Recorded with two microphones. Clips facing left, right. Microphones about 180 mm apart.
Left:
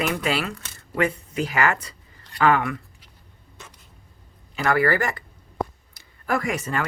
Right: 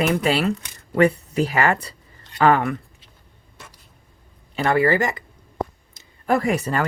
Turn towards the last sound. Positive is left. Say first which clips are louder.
# right 5 dB
turn(degrees=-35)  # may be behind; listen again after turning